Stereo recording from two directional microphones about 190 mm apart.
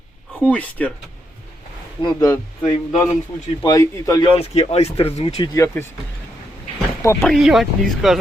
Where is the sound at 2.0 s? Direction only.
20° left (ahead or behind).